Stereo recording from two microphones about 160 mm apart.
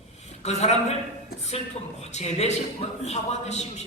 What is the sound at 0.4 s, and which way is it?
A man's voice, 40° left (ahead or behind).